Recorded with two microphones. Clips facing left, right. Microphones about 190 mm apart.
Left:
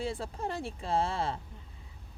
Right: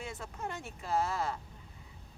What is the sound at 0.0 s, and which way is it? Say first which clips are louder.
Speech: left 6 dB; 30° left (ahead or behind).